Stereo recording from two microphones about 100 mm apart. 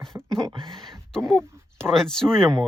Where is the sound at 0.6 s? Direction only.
5° left (ahead or behind).